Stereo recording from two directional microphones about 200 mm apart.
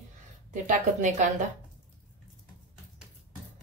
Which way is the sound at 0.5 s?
40° right (ahead or behind).